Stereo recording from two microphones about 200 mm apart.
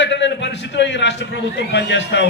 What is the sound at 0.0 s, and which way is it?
A man's voice, 65° left (ahead or behind).